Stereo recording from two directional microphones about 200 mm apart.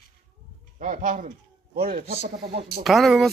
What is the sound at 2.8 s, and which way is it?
Speech, centre (ahead or behind).